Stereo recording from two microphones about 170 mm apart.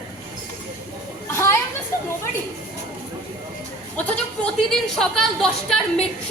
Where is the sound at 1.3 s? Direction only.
15° left (ahead or behind).